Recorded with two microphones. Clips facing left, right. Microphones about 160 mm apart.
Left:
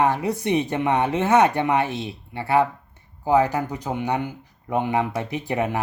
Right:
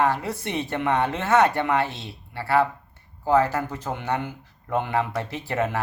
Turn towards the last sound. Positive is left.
turn(degrees=15)  # may be behind; listen again after turning